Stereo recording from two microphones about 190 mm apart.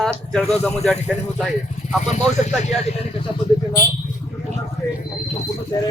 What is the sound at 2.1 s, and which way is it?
Speech, 40° left (ahead or behind).